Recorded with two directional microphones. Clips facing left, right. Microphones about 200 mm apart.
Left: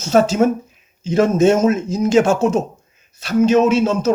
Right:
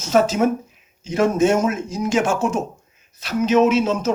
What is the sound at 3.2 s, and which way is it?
Speech, 30° left (ahead or behind).